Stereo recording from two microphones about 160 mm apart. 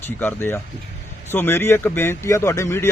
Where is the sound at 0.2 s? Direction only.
15° left (ahead or behind).